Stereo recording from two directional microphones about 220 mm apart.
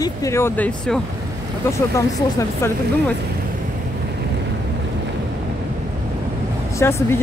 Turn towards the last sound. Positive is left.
turn(degrees=10)  # may be behind; listen again after turning